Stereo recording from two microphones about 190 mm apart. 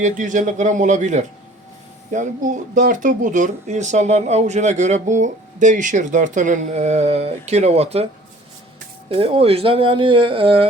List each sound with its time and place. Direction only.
0.2 s speech: 40° right (ahead or behind)
9.0 s speech: 30° right (ahead or behind)